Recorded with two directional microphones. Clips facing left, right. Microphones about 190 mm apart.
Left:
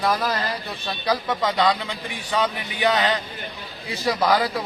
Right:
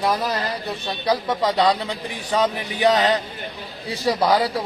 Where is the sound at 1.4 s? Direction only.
35° right (ahead or behind).